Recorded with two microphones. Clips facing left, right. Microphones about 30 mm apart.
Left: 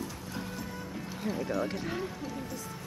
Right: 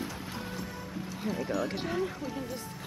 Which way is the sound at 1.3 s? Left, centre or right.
Centre.